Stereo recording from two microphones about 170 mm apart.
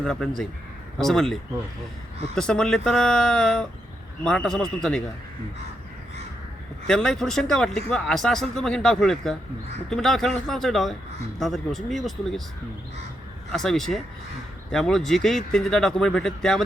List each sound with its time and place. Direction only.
0.0 s speech: 5° left (ahead or behind)
6.8 s speech: 5° left (ahead or behind)
13.5 s speech: centre (ahead or behind)